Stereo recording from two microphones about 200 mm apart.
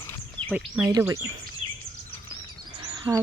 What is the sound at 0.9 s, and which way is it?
Speech, 15° right (ahead or behind).